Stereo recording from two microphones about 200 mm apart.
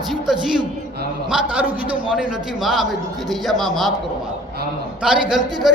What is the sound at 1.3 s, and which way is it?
A man's voice, 5° right (ahead or behind).